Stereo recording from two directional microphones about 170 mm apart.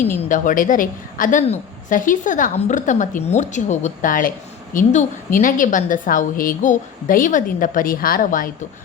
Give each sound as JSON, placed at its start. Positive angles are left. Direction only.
{"t": 0.3, "sound": "a woman's voice", "side_deg": 50}